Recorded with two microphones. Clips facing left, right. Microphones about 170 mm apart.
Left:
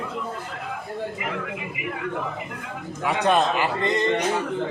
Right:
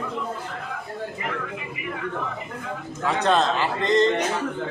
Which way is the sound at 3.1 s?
15° left (ahead or behind).